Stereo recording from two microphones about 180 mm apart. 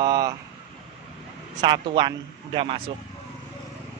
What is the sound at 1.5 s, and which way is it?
A man's voice, 25° right (ahead or behind).